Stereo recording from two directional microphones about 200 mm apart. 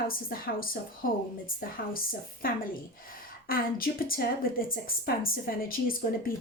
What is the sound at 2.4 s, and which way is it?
Speech, 45° left (ahead or behind).